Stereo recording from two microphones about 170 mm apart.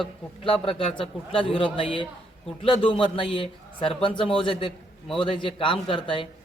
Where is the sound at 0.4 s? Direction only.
30° left (ahead or behind).